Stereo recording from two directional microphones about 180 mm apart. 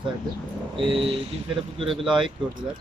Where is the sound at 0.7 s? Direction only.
30° right (ahead or behind).